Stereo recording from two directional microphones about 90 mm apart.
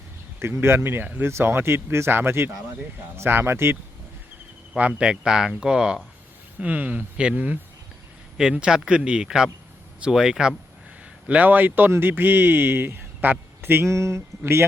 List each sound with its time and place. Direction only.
0.3 s speech: 25° right (ahead or behind)
4.7 s speech: 10° right (ahead or behind)
11.3 s speech: 15° right (ahead or behind)